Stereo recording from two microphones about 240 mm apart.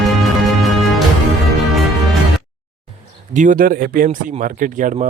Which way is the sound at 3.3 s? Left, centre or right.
Right.